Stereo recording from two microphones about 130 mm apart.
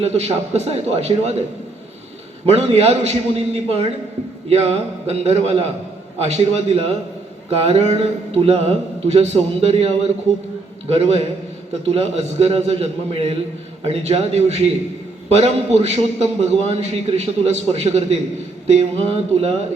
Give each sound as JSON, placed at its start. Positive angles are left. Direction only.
{"t": 0.0, "sound": "a man's voice", "side_deg": -55}
{"t": 2.5, "sound": "a man's voice", "side_deg": -55}
{"t": 10.9, "sound": "a man's voice", "side_deg": -55}